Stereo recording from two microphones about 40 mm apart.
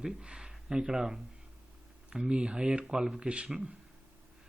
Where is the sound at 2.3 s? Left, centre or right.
Right.